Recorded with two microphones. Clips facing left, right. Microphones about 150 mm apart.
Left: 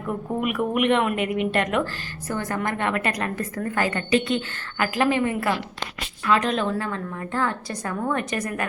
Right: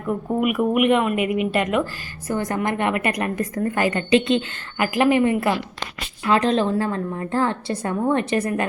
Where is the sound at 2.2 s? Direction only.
15° right (ahead or behind).